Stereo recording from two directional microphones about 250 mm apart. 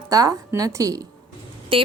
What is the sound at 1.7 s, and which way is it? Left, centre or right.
Music, right.